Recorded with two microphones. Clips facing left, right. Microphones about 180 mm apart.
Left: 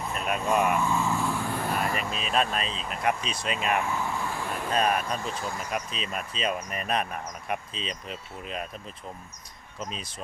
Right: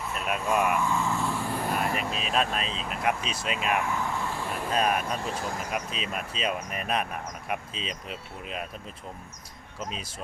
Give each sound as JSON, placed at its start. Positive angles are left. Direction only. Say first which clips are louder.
{"t": 0.1, "sound": "speech", "louder": "left 1 dB", "side_deg": -5}
{"t": 5.3, "sound": "speech", "louder": "right 1 dB", "side_deg": -40}
{"t": 5.7, "sound": "speech", "louder": "even", "side_deg": -5}